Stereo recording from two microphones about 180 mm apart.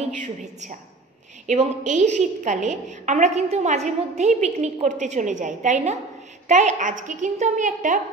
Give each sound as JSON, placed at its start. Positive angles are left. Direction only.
{"t": 0.2, "sound": "a woman's voice", "side_deg": -45}